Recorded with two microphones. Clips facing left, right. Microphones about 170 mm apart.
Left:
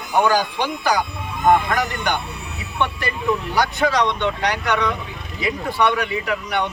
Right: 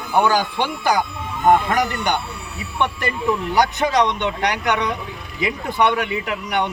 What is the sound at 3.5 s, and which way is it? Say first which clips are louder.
A man's voice: right 2 dB; 20° right (ahead or behind).